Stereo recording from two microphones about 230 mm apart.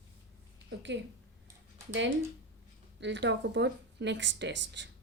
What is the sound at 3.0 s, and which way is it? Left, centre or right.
A woman's voice, right.